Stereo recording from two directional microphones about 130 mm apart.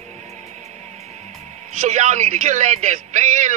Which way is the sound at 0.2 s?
60° right (ahead or behind).